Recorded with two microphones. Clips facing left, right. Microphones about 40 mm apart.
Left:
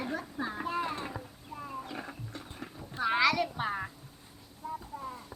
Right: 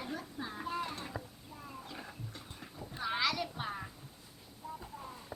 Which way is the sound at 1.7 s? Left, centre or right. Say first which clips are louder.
Left 6 dB; left.